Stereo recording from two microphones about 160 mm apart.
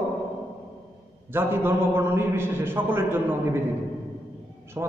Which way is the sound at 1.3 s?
15° right (ahead or behind).